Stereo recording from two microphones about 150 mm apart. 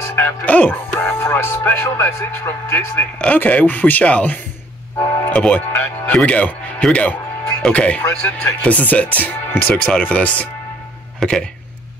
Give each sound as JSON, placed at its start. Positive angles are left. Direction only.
{"t": 0.0, "sound": "speech", "side_deg": 15}